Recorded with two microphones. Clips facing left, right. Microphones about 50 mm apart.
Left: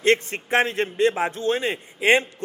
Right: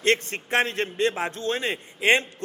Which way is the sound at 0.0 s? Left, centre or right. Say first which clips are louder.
Left 3 dB; centre.